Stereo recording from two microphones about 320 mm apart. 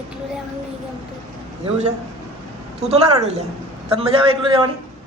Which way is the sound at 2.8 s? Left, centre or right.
Centre.